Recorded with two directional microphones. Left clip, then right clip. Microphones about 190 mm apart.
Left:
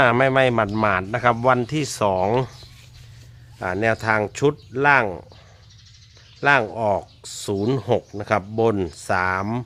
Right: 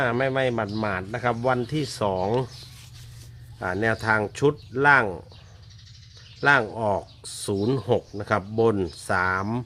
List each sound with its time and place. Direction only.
0.0 s a man's voice: 25° left (ahead or behind)
3.6 s speech: 15° left (ahead or behind)
6.4 s speech: 15° left (ahead or behind)